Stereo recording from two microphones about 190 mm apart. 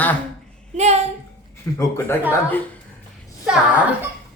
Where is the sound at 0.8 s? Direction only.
35° right (ahead or behind).